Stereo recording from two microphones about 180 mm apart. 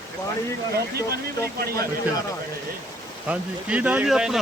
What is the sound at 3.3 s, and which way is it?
Speech, 5° right (ahead or behind).